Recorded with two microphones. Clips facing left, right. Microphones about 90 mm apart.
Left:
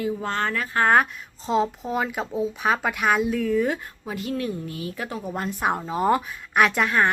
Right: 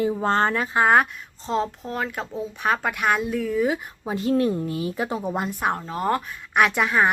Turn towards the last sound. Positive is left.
turn(degrees=-5)  # may be behind; listen again after turning